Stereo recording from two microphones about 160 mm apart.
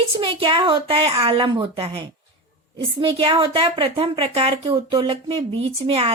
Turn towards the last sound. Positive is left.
turn(degrees=-35)  # may be behind; listen again after turning